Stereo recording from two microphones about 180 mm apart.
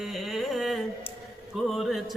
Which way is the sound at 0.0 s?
Centre (ahead or behind).